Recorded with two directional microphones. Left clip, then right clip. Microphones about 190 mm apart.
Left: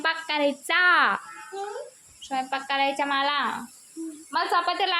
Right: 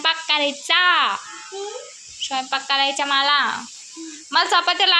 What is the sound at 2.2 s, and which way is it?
A woman's voice, 5° left (ahead or behind).